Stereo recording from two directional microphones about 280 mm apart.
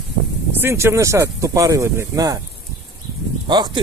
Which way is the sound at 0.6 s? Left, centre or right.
Centre.